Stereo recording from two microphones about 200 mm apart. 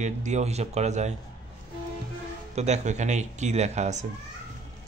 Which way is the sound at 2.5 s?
35° right (ahead or behind).